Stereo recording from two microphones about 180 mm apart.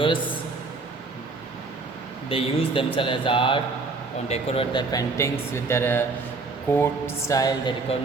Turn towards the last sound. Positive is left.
turn(degrees=20)  # may be behind; listen again after turning